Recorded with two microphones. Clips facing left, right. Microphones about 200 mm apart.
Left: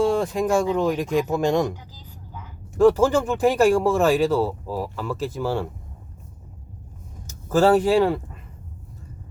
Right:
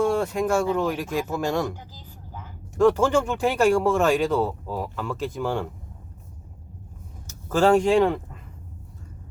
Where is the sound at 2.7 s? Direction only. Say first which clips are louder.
Left 2 dB; 10° left (ahead or behind).